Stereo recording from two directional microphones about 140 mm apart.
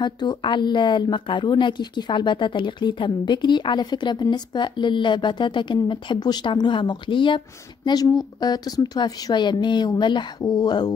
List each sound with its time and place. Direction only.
0.0 s a woman's voice: 35° left (ahead or behind)